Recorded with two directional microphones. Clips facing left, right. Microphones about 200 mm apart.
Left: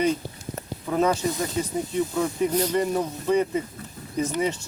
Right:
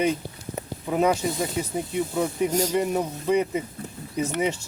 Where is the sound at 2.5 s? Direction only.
45° right (ahead or behind).